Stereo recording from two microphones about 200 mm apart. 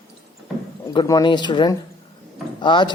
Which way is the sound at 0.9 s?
20° left (ahead or behind).